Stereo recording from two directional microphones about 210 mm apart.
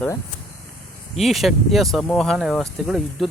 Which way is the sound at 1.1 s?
Centre (ahead or behind).